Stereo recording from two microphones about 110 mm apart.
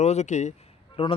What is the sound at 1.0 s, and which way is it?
Speech, 60° left (ahead or behind).